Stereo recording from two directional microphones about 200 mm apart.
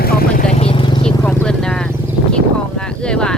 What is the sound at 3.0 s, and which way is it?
Wild animals, 5° left (ahead or behind).